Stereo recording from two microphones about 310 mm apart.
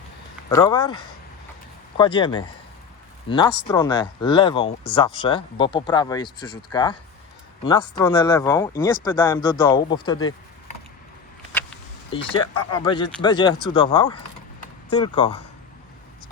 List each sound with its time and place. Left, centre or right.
0.5 s speech: centre
11.5 s a sound: centre
12.1 s speech: centre